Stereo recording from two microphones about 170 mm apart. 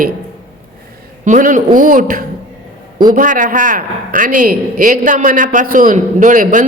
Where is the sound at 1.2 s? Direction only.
50° right (ahead or behind).